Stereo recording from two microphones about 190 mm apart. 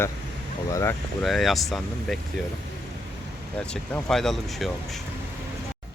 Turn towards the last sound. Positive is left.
turn(degrees=0)  # may be behind; listen again after turning